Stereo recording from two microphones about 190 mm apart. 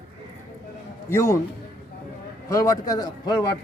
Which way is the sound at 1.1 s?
15° left (ahead or behind).